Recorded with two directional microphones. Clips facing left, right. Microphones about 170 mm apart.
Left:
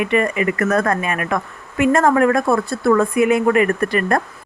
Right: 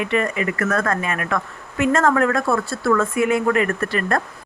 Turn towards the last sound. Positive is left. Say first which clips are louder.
# left 4 dB
turn(degrees=15)  # may be behind; listen again after turning